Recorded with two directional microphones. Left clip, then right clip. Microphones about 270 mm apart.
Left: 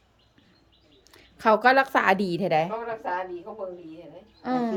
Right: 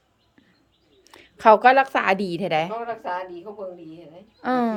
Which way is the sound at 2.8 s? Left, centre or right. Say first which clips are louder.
Right 1 dB; right.